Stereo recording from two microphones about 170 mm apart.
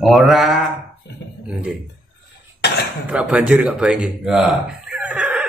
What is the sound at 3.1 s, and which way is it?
Speech, 10° right (ahead or behind).